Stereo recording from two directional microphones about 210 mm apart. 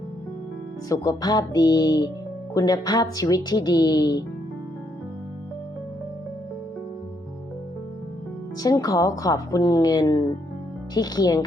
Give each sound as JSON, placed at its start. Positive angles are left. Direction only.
{"t": 0.9, "sound": "speech", "side_deg": 15}
{"t": 8.6, "sound": "speech", "side_deg": 15}